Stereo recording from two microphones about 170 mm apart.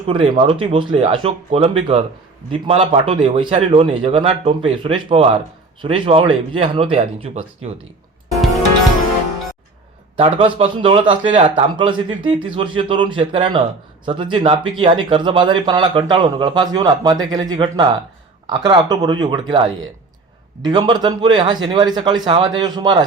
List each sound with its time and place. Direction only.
0.0 s a man's voice: 30° right (ahead or behind)
10.2 s a man's voice: 35° right (ahead or behind)
20.7 s speech: 25° right (ahead or behind)